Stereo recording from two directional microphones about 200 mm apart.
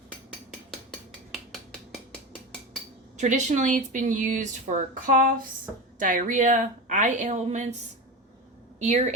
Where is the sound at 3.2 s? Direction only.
35° right (ahead or behind).